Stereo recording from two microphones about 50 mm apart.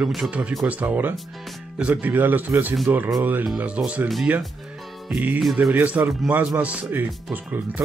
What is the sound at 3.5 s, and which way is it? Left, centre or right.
Speech, right.